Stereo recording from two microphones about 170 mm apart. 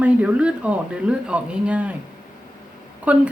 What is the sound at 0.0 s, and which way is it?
A woman's voice, 10° right (ahead or behind).